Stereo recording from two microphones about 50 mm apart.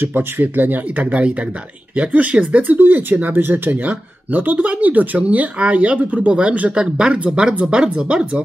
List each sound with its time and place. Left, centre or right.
0.0 s speech: right
2.6 s speech: right